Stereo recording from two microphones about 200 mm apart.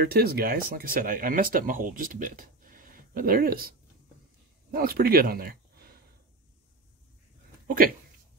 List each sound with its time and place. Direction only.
0.0 s speech: 50° right (ahead or behind)
7.6 s speech: 45° right (ahead or behind)